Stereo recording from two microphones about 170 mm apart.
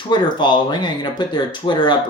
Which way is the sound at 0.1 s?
25° left (ahead or behind).